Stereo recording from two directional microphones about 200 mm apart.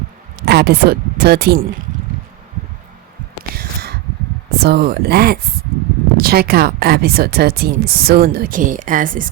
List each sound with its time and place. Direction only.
0.3 s speech: 55° right (ahead or behind)
3.5 s a sound: 50° right (ahead or behind)
4.5 s speech: 55° right (ahead or behind)